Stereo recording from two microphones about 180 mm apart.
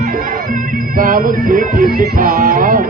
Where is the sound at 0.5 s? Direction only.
50° right (ahead or behind).